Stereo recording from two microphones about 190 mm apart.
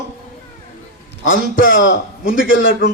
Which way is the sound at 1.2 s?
90° left.